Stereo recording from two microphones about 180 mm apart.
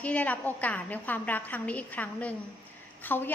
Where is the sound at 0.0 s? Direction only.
10° left (ahead or behind).